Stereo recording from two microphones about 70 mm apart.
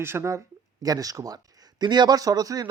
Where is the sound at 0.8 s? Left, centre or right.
Right.